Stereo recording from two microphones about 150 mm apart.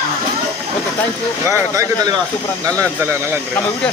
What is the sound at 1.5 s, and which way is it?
Speech, 20° right (ahead or behind).